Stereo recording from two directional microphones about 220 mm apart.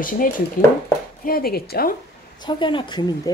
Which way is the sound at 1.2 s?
40° left (ahead or behind).